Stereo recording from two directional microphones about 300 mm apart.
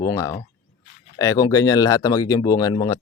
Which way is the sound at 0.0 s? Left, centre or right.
Centre.